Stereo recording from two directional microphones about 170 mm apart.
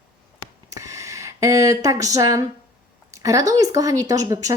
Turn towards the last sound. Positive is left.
turn(degrees=-20)  # may be behind; listen again after turning